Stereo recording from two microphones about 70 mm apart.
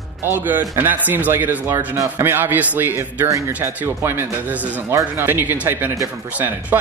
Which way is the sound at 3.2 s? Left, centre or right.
Right.